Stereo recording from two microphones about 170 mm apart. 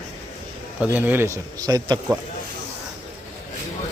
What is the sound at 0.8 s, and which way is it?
Speech, 10° right (ahead or behind).